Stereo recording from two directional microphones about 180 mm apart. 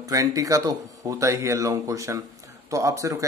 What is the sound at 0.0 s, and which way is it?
Speech, 20° right (ahead or behind).